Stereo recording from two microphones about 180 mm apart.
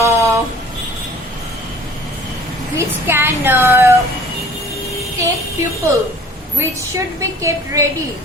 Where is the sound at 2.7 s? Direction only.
10° right (ahead or behind).